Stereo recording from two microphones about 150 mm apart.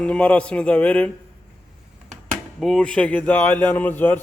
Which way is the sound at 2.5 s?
5° left (ahead or behind).